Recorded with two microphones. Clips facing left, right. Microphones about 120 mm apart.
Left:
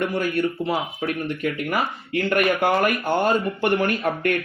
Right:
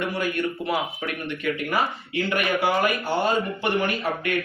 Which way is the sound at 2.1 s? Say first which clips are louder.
Left 4 dB; 50° left (ahead or behind).